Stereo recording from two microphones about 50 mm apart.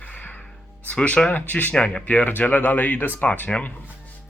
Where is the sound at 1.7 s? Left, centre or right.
Centre; by 3.1 s left.